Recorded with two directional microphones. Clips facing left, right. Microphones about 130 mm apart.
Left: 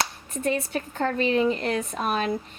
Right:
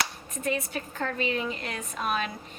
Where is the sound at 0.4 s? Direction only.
30° left (ahead or behind).